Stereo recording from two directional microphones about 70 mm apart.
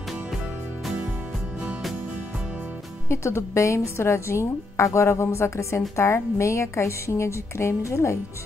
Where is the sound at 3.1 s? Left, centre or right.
Left.